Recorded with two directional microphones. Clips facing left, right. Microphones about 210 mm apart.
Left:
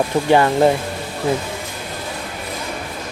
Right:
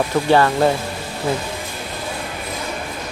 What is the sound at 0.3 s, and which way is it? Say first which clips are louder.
Speech: left 2 dB; 20° left (ahead or behind).